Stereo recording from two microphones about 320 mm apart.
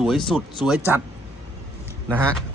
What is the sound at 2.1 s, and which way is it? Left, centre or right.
Speech, centre.